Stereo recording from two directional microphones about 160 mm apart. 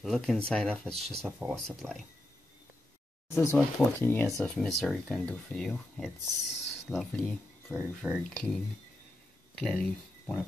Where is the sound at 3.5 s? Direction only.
15° left (ahead or behind).